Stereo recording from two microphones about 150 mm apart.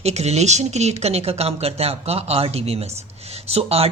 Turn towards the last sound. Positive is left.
turn(degrees=-40)  # may be behind; listen again after turning